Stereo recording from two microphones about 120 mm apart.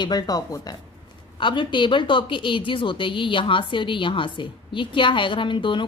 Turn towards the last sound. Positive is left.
turn(degrees=45)  # may be behind; listen again after turning